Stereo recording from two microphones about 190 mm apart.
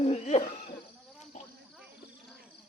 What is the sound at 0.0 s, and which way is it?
Hoot, 35° left (ahead or behind).